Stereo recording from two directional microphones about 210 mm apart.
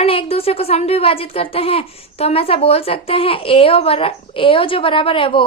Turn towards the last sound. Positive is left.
turn(degrees=25)  # may be behind; listen again after turning